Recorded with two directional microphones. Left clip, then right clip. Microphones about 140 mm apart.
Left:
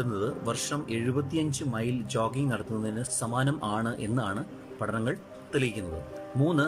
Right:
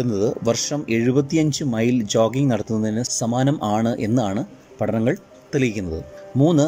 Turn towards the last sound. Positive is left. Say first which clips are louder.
# right 10 dB
turn(degrees=-25)  # may be behind; listen again after turning